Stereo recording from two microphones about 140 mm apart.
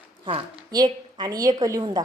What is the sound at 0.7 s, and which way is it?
A woman's voice, 30° right (ahead or behind).